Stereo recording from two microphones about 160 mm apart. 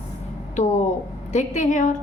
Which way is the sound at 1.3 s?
50° left (ahead or behind).